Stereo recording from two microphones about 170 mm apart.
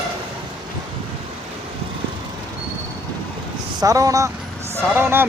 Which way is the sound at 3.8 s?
20° right (ahead or behind).